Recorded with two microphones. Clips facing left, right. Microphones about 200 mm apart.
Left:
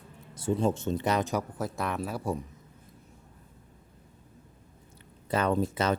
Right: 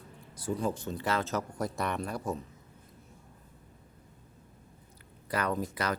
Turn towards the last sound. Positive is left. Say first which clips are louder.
# left 5 dB
turn(degrees=25)  # may be behind; listen again after turning